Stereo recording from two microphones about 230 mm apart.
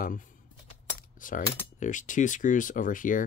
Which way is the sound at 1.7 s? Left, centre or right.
Left.